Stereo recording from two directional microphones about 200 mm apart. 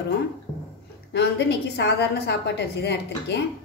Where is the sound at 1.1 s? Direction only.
60° left (ahead or behind).